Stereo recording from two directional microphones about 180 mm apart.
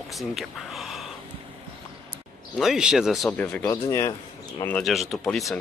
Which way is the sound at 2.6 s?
5° right (ahead or behind).